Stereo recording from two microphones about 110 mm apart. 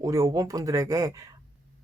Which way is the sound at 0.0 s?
30° right (ahead or behind).